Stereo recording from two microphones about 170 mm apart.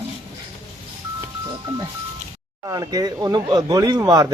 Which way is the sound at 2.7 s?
20° right (ahead or behind).